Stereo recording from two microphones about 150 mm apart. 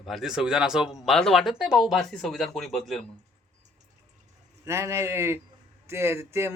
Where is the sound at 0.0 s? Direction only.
Centre (ahead or behind).